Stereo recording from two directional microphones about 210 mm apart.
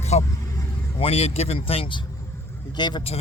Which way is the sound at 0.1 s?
30° left (ahead or behind).